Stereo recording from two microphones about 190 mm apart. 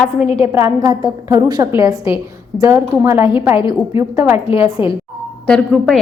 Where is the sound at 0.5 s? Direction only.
15° right (ahead or behind).